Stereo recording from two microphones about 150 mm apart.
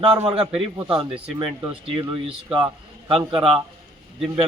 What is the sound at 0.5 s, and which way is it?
A man's voice, 35° right (ahead or behind).